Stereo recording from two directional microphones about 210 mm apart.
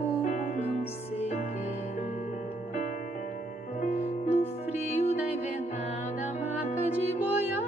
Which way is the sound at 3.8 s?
30° left (ahead or behind).